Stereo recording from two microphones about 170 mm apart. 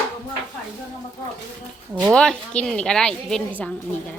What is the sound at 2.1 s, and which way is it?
Speech, 5° left (ahead or behind).